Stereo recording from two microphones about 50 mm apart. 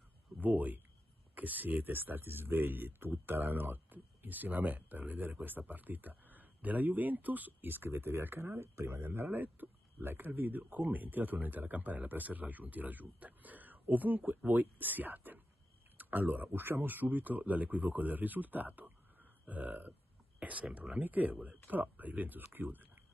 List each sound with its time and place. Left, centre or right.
0.4 s speech: right
16.5 s speech: right